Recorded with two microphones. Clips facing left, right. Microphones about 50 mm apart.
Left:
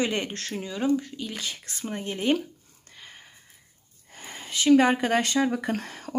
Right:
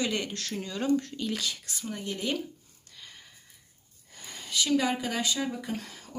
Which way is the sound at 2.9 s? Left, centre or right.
Left.